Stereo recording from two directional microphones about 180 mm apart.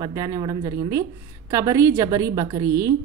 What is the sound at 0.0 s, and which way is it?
A woman's voice, 20° right (ahead or behind).